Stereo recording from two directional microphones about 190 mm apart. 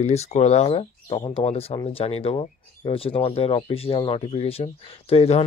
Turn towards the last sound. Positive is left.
turn(degrees=30)  # may be behind; listen again after turning